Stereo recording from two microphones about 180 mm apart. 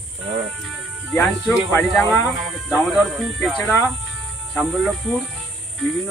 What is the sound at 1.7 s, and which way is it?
Speech, 10° left (ahead or behind).